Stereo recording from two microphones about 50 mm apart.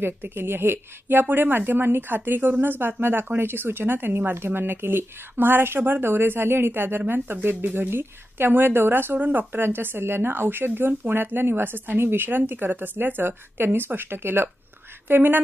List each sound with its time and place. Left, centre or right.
0.0 s a woman's voice: right